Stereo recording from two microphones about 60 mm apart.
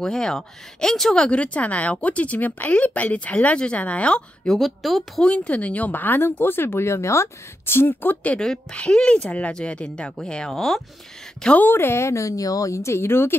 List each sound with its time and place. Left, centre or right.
0.0 s speech: centre
4.5 s a woman's voice: centre
5.2 s speech: centre; by 7.2 s left
7.6 s speech: left
8.4 s speech: centre
11.5 s speech: left